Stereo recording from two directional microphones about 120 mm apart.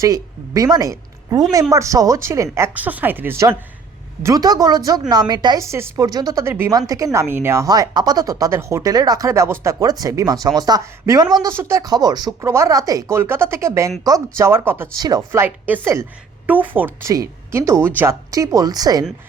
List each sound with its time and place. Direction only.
0.0 s a woman's voice: 30° right (ahead or behind)
5.5 s a woman's voice: 25° right (ahead or behind)
14.9 s a woman's voice: 30° right (ahead or behind)
15.3 s speech: 15° right (ahead or behind); by 19.0 s 30° right (ahead or behind)